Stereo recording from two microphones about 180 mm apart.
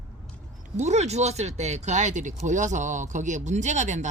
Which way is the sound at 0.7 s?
40° right (ahead or behind).